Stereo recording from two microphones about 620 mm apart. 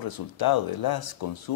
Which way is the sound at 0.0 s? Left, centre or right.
Left.